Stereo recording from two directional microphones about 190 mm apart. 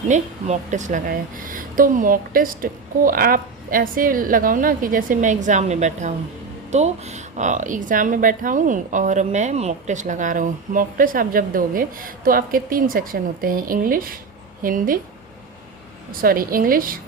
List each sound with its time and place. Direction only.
0.1 s speech: 40° right (ahead or behind)
16.2 s speech: 50° right (ahead or behind)